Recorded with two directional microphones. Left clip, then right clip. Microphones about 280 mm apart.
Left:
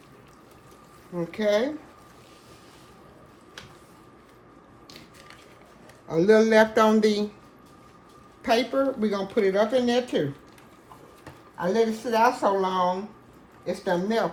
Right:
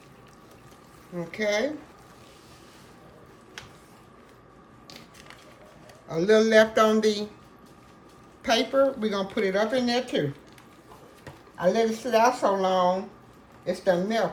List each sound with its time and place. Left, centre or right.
1.1 s speech: centre
6.1 s speech: centre
8.4 s speech: centre
11.6 s speech: centre